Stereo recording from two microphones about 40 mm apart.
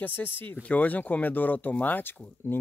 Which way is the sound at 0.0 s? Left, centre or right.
Left.